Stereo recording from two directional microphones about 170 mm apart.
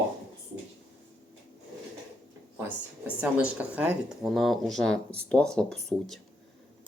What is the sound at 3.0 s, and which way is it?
Speech, 5° right (ahead or behind).